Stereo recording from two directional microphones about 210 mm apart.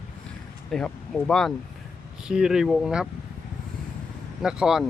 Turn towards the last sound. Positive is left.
turn(degrees=-5)  # may be behind; listen again after turning